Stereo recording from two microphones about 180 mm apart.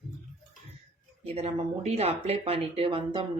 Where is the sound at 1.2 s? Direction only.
35° right (ahead or behind).